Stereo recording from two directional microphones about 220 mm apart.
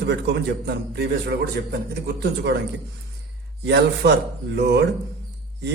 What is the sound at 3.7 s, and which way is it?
A man's voice, 50° right (ahead or behind).